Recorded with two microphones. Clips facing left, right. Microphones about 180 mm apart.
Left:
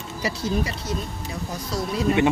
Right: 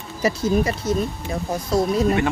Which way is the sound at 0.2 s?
50° right (ahead or behind).